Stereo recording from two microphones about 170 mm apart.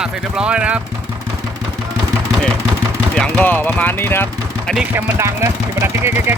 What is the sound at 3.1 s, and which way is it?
Speech, 5° left (ahead or behind).